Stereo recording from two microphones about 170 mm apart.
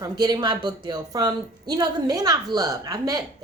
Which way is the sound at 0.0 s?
25° right (ahead or behind).